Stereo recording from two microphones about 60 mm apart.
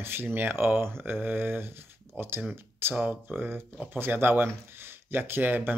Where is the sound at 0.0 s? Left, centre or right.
Right.